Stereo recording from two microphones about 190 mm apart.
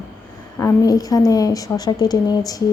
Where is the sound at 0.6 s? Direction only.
15° left (ahead or behind).